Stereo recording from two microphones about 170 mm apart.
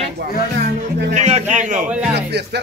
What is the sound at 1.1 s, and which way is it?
Speech, 40° right (ahead or behind).